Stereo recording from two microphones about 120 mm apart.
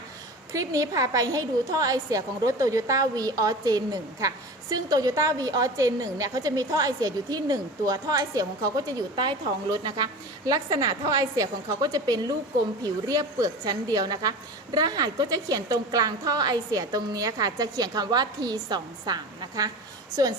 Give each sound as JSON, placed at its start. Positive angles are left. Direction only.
{"t": 0.5, "sound": "a woman's voice", "side_deg": -30}